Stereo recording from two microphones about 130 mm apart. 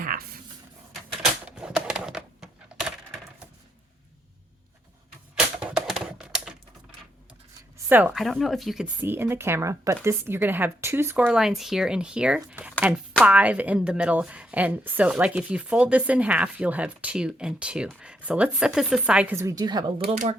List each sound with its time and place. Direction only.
1.2 s typewriter: 5° right (ahead or behind)
5.3 s typewriter: 5° right (ahead or behind)
7.9 s a woman's voice: 15° right (ahead or behind)
8.1 s speech: centre (ahead or behind)
9.0 s a woman's voice: 15° right (ahead or behind)
11.3 s speech: 5° right (ahead or behind)
19.4 s a woman's voice: 25° right (ahead or behind)